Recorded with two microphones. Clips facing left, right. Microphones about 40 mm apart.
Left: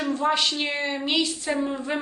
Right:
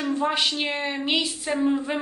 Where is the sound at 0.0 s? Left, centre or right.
Centre.